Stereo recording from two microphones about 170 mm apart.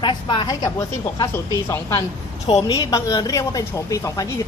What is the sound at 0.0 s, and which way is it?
Speech, 25° left (ahead or behind).